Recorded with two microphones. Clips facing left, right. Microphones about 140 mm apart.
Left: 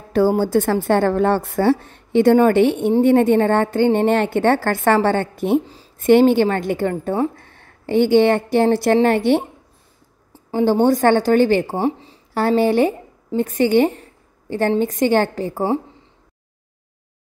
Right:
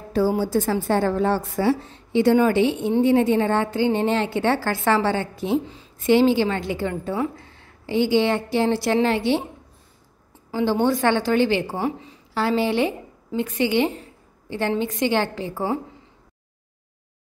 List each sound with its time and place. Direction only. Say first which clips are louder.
0.1 s a woman's voice: left 5 dB; 65° left (ahead or behind)
10.5 s a woman's voice: left 5 dB; 45° left (ahead or behind)
11.7 s speech: left 5 dB; 30° left (ahead or behind)
12.4 s a woman's voice: left 5 dB; 45° left (ahead or behind)